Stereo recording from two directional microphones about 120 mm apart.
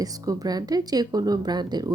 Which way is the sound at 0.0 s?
30° right (ahead or behind).